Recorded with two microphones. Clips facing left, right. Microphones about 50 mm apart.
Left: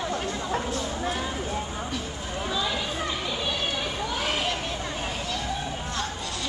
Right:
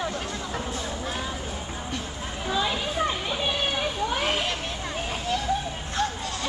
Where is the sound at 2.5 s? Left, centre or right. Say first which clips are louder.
Right 3 dB; right.